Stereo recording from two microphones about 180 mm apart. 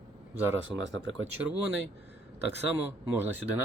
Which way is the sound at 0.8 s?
90° right.